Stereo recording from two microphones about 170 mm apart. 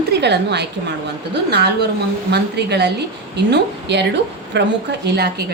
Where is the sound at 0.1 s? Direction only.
80° right.